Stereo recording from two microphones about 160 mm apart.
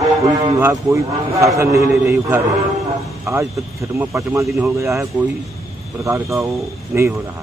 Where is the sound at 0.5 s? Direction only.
15° right (ahead or behind).